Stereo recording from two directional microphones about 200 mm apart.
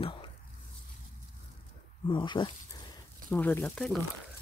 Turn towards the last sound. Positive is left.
turn(degrees=0)  # may be behind; listen again after turning